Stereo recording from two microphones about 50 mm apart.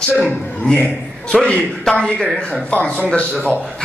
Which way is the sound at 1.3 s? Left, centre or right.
Left.